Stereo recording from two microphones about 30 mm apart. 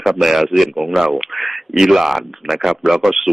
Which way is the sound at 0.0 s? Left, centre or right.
Centre.